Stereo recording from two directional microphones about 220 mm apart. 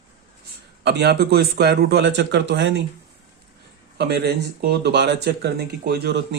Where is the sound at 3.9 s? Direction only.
50° right (ahead or behind).